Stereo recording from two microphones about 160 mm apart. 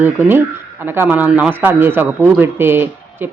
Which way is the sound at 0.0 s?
10° right (ahead or behind).